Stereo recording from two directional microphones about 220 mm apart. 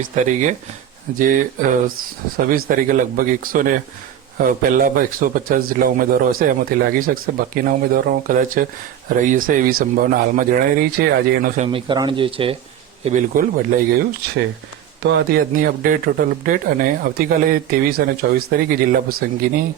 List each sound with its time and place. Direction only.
1.2 s a man's voice: 35° right (ahead or behind)
13.1 s a man's voice: 35° right (ahead or behind)